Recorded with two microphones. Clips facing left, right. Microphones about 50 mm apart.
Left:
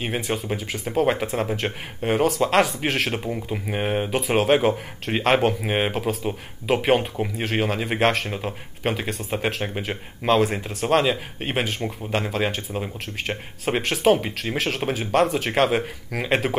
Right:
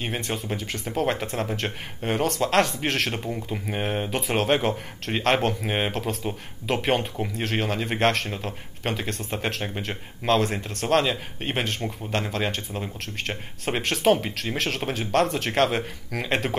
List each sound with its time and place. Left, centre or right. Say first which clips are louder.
0.0 s speech: left 3 dB; centre